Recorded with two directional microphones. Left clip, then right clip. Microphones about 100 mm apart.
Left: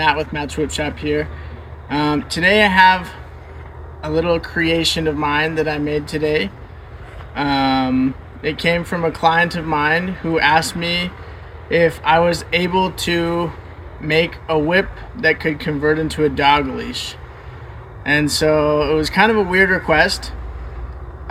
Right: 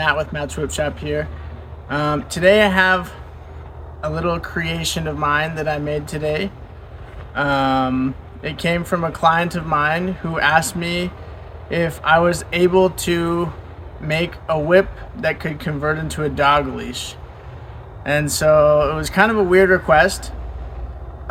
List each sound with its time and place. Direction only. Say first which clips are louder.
0.0 s speech: left 2 dB; 45° right (ahead or behind)
14.2 s speech: left 4 dB; 40° right (ahead or behind)
18.0 s speech: left 1 dB; 35° right (ahead or behind)